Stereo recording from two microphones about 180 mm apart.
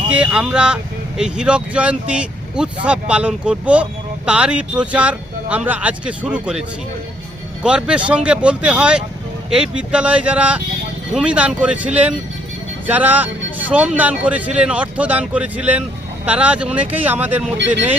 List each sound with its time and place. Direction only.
0.1 s speech: 5° right (ahead or behind)
7.6 s speech: 5° right (ahead or behind)
12.9 s speech: 10° right (ahead or behind)